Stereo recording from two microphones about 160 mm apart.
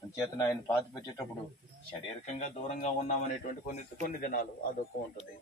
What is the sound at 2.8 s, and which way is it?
A man's voice, 45° left (ahead or behind).